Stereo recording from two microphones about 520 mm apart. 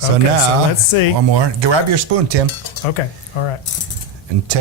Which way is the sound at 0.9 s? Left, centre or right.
Left.